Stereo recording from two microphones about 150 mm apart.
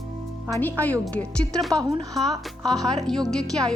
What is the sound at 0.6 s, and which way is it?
Speech, 10° left (ahead or behind).